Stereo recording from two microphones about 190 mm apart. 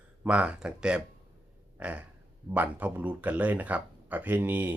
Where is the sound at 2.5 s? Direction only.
10° right (ahead or behind).